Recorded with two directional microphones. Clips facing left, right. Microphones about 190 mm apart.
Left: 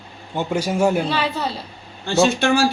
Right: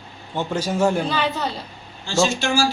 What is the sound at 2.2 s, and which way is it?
Speech, 60° left (ahead or behind).